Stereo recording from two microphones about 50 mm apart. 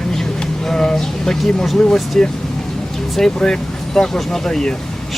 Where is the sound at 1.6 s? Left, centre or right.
Centre.